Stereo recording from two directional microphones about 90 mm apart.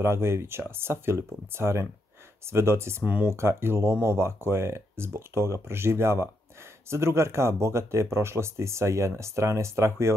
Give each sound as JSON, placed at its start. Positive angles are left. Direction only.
{"t": 0.0, "sound": "speech", "side_deg": -30}
{"t": 3.0, "sound": "speech", "side_deg": -15}
{"t": 3.3, "sound": "speech", "side_deg": -30}